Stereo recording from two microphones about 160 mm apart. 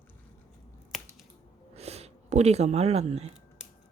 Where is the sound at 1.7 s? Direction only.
40° right (ahead or behind).